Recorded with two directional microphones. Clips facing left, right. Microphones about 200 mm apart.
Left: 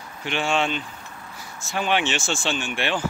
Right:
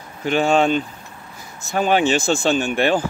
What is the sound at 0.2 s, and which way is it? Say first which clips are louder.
Speech: right 7 dB; 40° right (ahead or behind).